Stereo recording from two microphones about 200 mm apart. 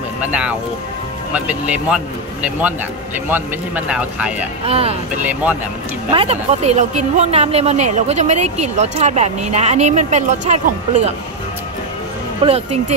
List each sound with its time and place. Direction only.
0.3 s speech: 5° right (ahead or behind)
3.3 s speech: 10° right (ahead or behind)
4.6 s speech: 30° right (ahead or behind)
5.2 s speech: 10° right (ahead or behind)
6.0 s speech: 30° right (ahead or behind)
12.4 s speech: 30° right (ahead or behind)